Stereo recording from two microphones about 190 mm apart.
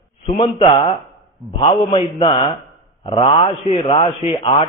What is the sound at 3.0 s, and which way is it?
A man's voice, 30° left (ahead or behind).